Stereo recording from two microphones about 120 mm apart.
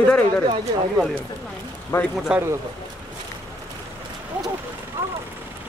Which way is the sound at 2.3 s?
25° right (ahead or behind).